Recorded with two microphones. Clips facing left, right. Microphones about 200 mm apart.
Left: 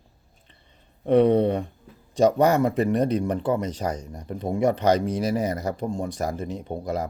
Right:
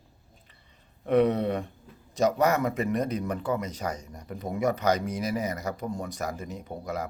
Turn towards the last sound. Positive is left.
turn(degrees=30)  # may be behind; listen again after turning